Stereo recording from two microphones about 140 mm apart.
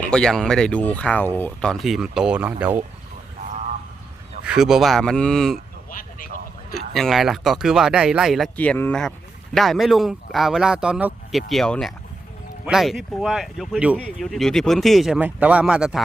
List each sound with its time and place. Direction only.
0.0 s speech: 5° left (ahead or behind); by 2.8 s 10° right (ahead or behind)
4.4 s speech: 5° right (ahead or behind)
5.9 s a sound: 85° left
6.7 s speech: centre (ahead or behind)
8.5 s speech: 10° left (ahead or behind); by 14.3 s 10° right (ahead or behind)
14.3 s speech: centre (ahead or behind)